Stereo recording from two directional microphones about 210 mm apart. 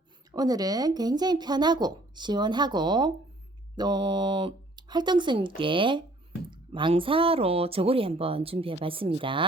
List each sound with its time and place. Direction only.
0.3 s speech: 20° right (ahead or behind)